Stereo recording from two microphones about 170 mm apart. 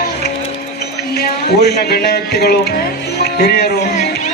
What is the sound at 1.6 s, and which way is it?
A man's voice, 70° left (ahead or behind).